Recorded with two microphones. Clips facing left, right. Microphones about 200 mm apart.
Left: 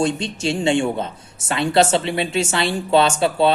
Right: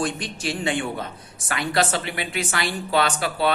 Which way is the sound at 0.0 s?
25° left (ahead or behind).